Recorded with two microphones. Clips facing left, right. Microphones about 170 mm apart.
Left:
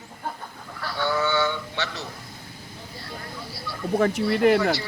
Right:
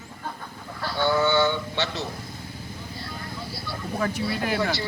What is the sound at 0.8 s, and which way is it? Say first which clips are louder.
Speech: right 3 dB; 25° right (ahead or behind).